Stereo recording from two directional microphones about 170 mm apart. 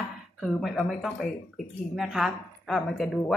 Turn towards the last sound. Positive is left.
turn(degrees=0)  # may be behind; listen again after turning